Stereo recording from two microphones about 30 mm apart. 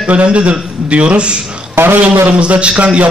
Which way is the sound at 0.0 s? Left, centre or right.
Right.